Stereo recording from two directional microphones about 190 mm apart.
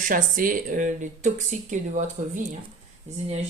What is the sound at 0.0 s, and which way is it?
Speech, 45° right (ahead or behind).